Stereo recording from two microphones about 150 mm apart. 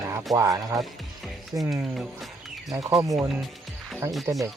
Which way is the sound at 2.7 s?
25° right (ahead or behind).